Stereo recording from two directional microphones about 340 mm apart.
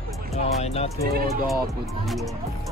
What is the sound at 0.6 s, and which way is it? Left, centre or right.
Speech, centre.